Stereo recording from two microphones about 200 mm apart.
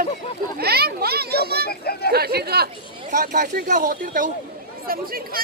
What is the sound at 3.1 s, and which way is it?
Speech, 40° right (ahead or behind).